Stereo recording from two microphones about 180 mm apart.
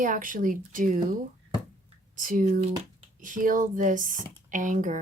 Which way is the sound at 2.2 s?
50° right (ahead or behind).